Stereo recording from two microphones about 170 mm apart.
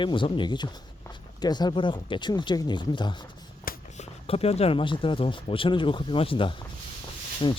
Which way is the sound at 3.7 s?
55° left (ahead or behind).